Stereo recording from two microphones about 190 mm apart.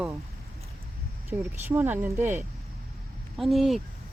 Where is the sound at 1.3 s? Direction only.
10° right (ahead or behind).